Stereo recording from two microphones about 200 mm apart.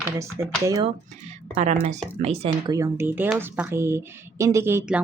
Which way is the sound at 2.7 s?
15° right (ahead or behind).